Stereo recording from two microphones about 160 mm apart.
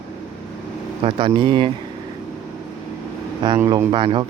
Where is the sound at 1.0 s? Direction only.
35° right (ahead or behind).